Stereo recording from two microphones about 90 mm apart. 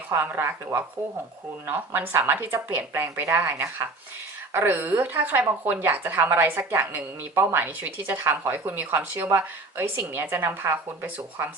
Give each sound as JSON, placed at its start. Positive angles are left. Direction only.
{"t": 0.1, "sound": "a woman's voice", "side_deg": -25}
{"t": 1.6, "sound": "a woman's voice", "side_deg": -20}